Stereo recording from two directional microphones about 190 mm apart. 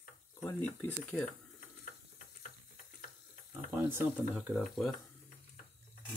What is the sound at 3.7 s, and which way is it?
Speech, 10° right (ahead or behind).